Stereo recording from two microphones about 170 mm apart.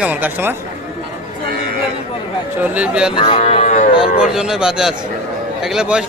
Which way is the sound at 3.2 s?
35° left (ahead or behind).